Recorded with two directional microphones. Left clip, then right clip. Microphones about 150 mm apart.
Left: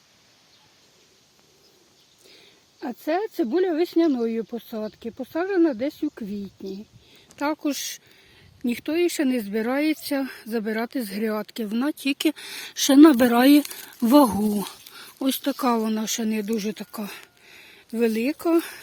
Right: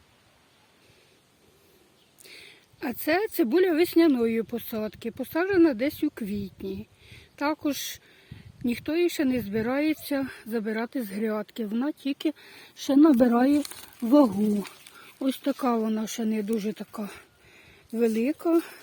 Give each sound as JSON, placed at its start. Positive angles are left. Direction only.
{"t": 2.2, "sound": "speech", "side_deg": -15}
{"t": 7.1, "sound": "speech", "side_deg": 15}
{"t": 15.2, "sound": "speech", "side_deg": 15}